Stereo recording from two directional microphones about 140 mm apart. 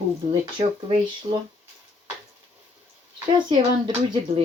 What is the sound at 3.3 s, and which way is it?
Speech, 35° right (ahead or behind).